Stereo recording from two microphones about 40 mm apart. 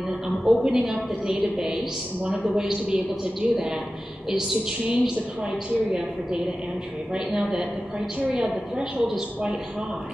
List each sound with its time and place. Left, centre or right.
0.5 s a woman's voice: centre
0.7 s a woman's voice: centre
8.3 s a woman's voice: centre